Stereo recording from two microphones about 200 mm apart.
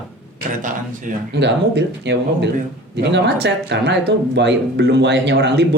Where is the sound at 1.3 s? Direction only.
60° right (ahead or behind).